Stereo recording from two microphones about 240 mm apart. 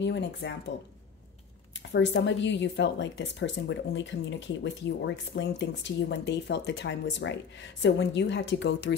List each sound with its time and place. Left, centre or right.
0.0 s speech: left
1.9 s speech: left